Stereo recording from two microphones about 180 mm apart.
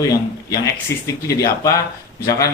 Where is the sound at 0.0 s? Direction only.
20° left (ahead or behind).